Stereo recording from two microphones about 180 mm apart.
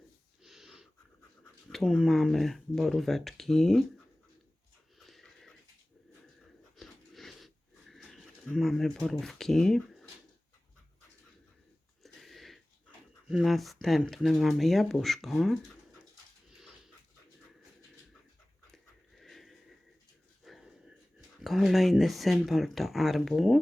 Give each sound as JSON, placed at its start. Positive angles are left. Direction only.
{"t": 0.4, "sound": "snort", "side_deg": 0}
{"t": 1.7, "sound": "speech", "side_deg": 0}
{"t": 5.0, "sound": "wheeze", "side_deg": 0}
{"t": 6.7, "sound": "wheeze", "side_deg": 0}
{"t": 8.5, "sound": "speech", "side_deg": 0}
{"t": 12.0, "sound": "a sound", "side_deg": 0}
{"t": 13.2, "sound": "speech", "side_deg": 0}
{"t": 18.7, "sound": "a sound", "side_deg": 0}
{"t": 21.4, "sound": "speech", "side_deg": 0}